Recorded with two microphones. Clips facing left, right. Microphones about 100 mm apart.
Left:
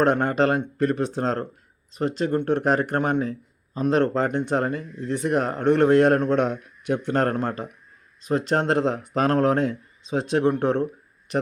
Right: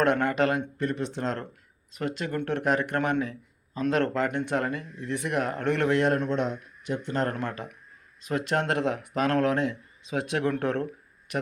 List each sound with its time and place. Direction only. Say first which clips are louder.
0.0 s speech: left 3 dB; 35° left (ahead or behind)
6.0 s a man's voice: left 6 dB; 50° left (ahead or behind)
7.3 s speech: left 6 dB; 35° left (ahead or behind)